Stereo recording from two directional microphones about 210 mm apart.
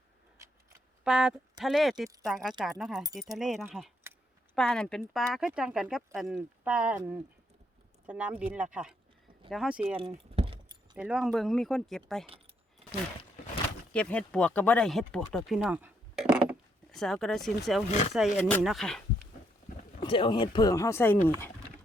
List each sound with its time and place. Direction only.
1.0 s speech: 5° right (ahead or behind)
10.0 s keys jangling: 25° right (ahead or behind)
10.9 s speech: 5° right (ahead or behind)
13.9 s speech: 5° left (ahead or behind)
20.0 s speech: 25° left (ahead or behind)